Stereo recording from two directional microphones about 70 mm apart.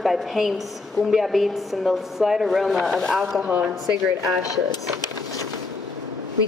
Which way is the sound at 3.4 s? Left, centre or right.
Right.